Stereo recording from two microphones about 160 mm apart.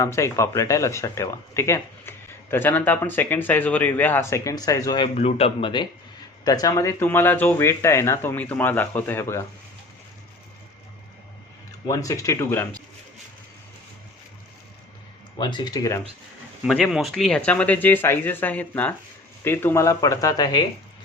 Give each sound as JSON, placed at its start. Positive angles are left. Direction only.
{"t": 0.0, "sound": "speech", "side_deg": 20}
{"t": 5.1, "sound": "speech", "side_deg": 40}
{"t": 11.9, "sound": "speech", "side_deg": 20}
{"t": 15.4, "sound": "speech", "side_deg": 30}
{"t": 16.6, "sound": "speech", "side_deg": 0}